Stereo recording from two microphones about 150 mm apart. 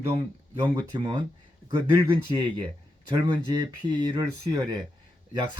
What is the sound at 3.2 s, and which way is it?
Speech, 25° right (ahead or behind).